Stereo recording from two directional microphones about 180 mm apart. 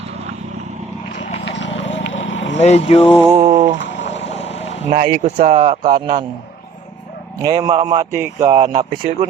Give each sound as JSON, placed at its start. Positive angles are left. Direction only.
{"t": 1.1, "sound": "vehicle", "side_deg": 40}
{"t": 1.5, "sound": "clip-clop", "side_deg": 90}
{"t": 2.0, "sound": "vehicle", "side_deg": 90}
{"t": 2.6, "sound": "speech", "side_deg": 35}
{"t": 3.3, "sound": "speech", "side_deg": -35}
{"t": 3.8, "sound": "a sound", "side_deg": 80}
{"t": 4.3, "sound": "vehicle", "side_deg": 35}
{"t": 4.9, "sound": "speech", "side_deg": -40}
{"t": 7.4, "sound": "speech", "side_deg": -20}